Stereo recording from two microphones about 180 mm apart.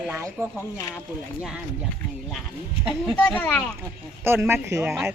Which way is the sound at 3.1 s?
10° left (ahead or behind).